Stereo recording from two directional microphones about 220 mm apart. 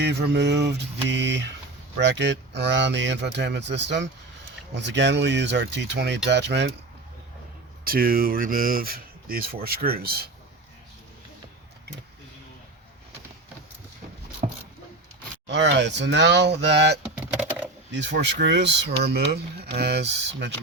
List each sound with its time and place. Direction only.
0.0 s speech: 50° right (ahead or behind)
7.9 s speech: 40° right (ahead or behind)
15.4 s speech: 55° right (ahead or behind)
17.0 s vehicle: 5° right (ahead or behind)
17.9 s speech: 50° right (ahead or behind)